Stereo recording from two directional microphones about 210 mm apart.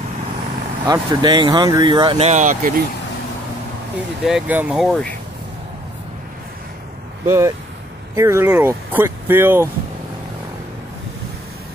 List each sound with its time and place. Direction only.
0.8 s speech: 20° right (ahead or behind); by 2.7 s 35° right (ahead or behind)
4.2 s speech: 5° right (ahead or behind)
7.2 s speech: 15° right (ahead or behind)